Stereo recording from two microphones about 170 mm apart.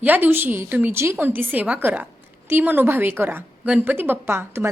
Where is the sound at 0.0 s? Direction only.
10° right (ahead or behind).